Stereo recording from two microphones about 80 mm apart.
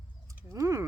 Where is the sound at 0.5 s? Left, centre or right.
Right.